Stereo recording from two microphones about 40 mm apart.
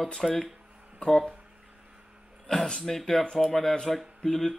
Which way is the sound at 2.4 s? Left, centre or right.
Centre.